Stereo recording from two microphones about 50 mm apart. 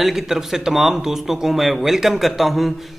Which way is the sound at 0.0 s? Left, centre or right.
Centre.